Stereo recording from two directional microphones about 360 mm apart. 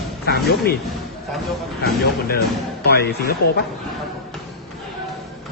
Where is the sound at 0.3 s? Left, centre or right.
Left.